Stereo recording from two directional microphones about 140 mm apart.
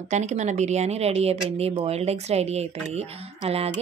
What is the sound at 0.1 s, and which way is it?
Speech, 55° right (ahead or behind).